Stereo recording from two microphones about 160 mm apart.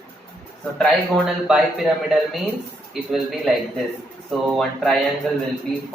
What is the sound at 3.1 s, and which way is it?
Speech, centre (ahead or behind).